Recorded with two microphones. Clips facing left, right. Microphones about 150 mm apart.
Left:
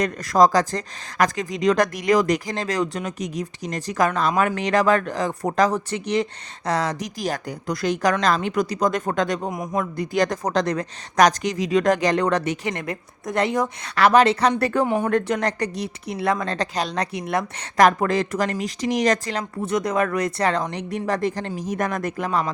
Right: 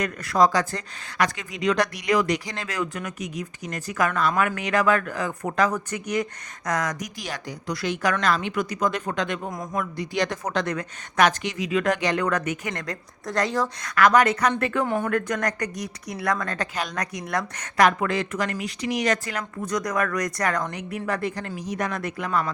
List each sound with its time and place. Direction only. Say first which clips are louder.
0.0 s speech: left 3 dB; 40° left (ahead or behind)
7.2 s speech: left 7 dB; 45° left (ahead or behind)
9.5 s speech: left 4 dB; 20° left (ahead or behind)
10.0 s speech: left 5 dB; 45° left (ahead or behind)
12.7 s speech: left 3 dB; 20° left (ahead or behind)
17.7 s speech: left 3 dB; 40° left (ahead or behind)